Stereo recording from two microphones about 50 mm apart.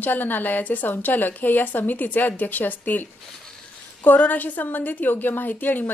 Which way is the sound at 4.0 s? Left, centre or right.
Left.